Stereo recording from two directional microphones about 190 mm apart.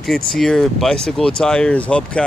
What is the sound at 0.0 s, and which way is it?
Speech, centre (ahead or behind).